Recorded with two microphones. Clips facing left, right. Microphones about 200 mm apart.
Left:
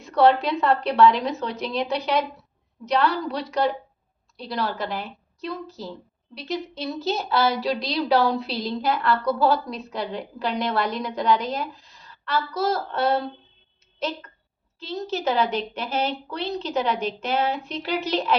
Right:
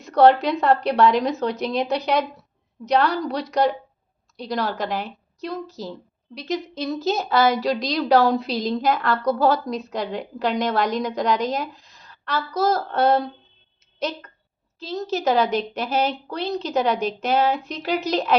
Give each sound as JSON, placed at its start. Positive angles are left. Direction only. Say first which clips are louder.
{"t": 0.0, "sound": "a woman's voice", "louder": "right 3 dB", "side_deg": -40}
{"t": 14.8, "sound": "a woman's voice", "louder": "right 2 dB", "side_deg": -40}